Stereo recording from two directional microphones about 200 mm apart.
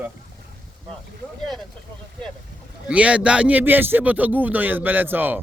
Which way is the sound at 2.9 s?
5° right (ahead or behind).